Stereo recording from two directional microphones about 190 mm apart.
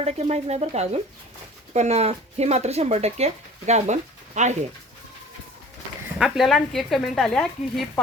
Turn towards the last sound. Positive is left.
turn(degrees=5)  # may be behind; listen again after turning